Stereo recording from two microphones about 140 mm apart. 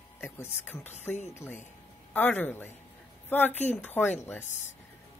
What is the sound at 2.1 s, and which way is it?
A woman's voice, 15° left (ahead or behind).